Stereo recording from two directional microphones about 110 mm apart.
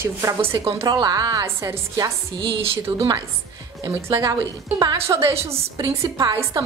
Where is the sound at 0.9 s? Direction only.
40° right (ahead or behind).